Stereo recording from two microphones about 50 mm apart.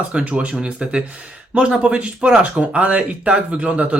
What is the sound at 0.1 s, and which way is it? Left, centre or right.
A man's voice, right.